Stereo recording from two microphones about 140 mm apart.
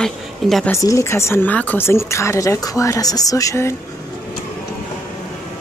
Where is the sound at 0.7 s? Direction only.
20° left (ahead or behind).